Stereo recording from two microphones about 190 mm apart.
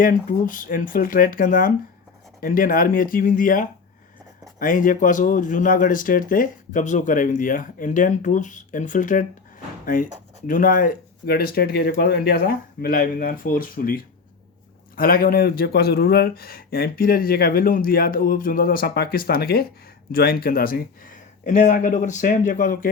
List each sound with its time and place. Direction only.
0.0 s speech: 45° left (ahead or behind)